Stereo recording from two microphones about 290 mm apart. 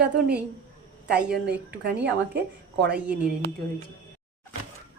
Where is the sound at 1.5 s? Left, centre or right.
Right.